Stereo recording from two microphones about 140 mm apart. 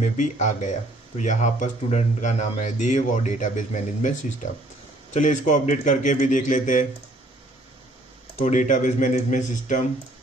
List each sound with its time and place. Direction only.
0.0 s speech: 60° left (ahead or behind)
8.4 s speech: 65° left (ahead or behind)